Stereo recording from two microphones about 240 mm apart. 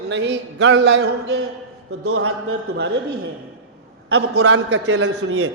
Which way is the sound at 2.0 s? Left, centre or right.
Right.